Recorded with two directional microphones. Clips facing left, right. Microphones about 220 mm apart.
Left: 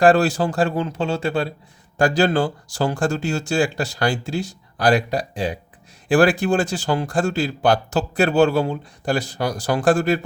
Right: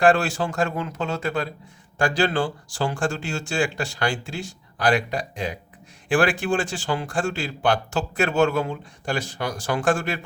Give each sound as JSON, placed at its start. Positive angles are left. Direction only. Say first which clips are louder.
{"t": 0.0, "sound": "speech", "louder": "left 4 dB", "side_deg": 40}